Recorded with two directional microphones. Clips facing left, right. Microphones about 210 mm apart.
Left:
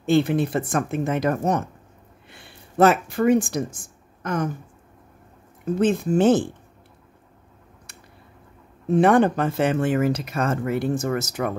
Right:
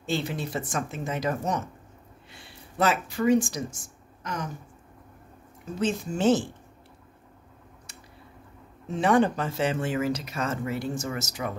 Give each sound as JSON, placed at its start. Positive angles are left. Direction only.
{"t": 0.0, "sound": "speech", "side_deg": 55}
{"t": 5.8, "sound": "speech", "side_deg": 55}
{"t": 8.8, "sound": "speech", "side_deg": 55}